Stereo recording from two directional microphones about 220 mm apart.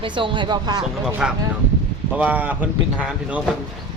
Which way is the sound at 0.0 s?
20° right (ahead or behind).